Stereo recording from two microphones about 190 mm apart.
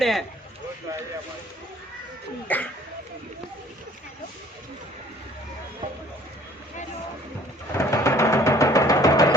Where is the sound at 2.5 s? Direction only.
10° left (ahead or behind).